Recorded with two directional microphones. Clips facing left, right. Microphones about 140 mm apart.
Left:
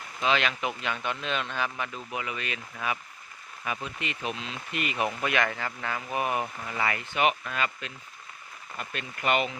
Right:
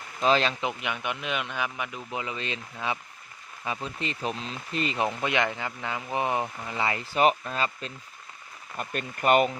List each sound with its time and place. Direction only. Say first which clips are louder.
0.2 s speech: right 3 dB; 35° right (ahead or behind)
0.6 s speech: right 1 dB; 20° right (ahead or behind)
3.8 s speech: right 2 dB; 35° right (ahead or behind)
8.8 s speech: right 4 dB; 45° right (ahead or behind)